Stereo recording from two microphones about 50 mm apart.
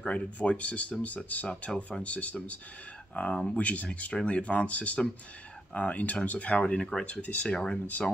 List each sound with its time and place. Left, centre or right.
0.0 s speech: left